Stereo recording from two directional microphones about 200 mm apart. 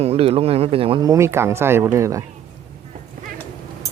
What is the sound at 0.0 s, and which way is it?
Speech, 30° right (ahead or behind).